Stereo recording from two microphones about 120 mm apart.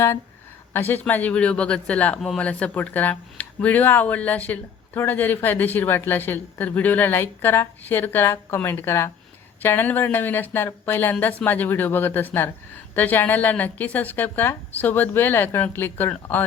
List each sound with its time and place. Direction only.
0.7 s speech: 15° left (ahead or behind)